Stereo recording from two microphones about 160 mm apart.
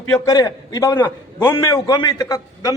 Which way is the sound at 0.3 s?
20° left (ahead or behind).